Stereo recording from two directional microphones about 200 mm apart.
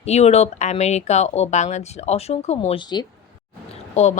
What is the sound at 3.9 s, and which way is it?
Speech, 35° left (ahead or behind).